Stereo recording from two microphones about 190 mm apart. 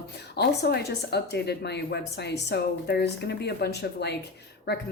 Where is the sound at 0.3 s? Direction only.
60° left (ahead or behind).